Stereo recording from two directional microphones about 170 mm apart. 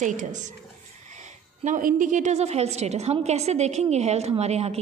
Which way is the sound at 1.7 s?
50° right (ahead or behind).